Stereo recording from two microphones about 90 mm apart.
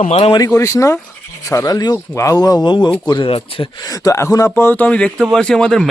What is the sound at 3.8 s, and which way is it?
Speech, 45° left (ahead or behind).